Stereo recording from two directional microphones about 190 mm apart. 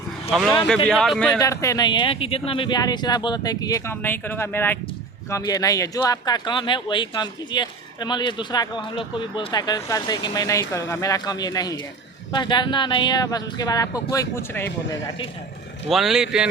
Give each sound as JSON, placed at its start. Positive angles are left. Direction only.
{"t": 0.3, "sound": "speech", "side_deg": 0}
{"t": 1.4, "sound": "speech", "side_deg": 15}
{"t": 15.9, "sound": "speech", "side_deg": 0}